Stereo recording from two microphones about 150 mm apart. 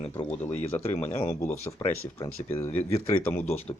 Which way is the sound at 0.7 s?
15° left (ahead or behind).